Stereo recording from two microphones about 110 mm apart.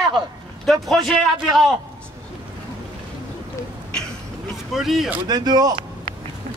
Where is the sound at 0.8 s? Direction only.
Centre (ahead or behind).